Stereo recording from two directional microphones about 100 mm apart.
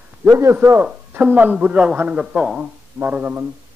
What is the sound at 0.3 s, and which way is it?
A man's voice, 25° right (ahead or behind).